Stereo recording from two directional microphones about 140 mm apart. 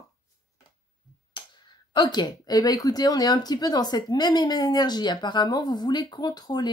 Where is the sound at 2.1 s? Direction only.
30° left (ahead or behind).